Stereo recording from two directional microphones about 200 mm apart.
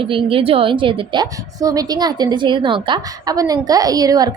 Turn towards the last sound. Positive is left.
turn(degrees=-20)  # may be behind; listen again after turning